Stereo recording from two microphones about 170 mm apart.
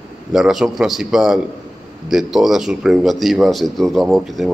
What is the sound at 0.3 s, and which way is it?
Speech, centre (ahead or behind).